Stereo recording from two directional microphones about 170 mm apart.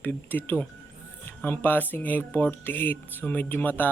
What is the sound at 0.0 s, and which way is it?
Speech, 10° left (ahead or behind).